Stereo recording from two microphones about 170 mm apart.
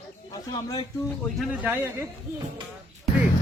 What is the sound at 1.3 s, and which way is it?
Speech, 10° right (ahead or behind).